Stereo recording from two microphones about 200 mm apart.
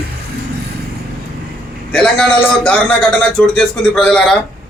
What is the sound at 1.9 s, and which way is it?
A man's voice, 5° left (ahead or behind).